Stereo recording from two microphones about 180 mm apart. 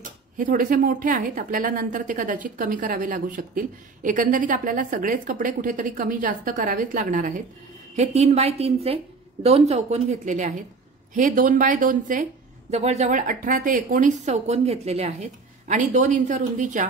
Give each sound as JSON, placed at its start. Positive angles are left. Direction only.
{"t": 0.0, "sound": "speech", "side_deg": -50}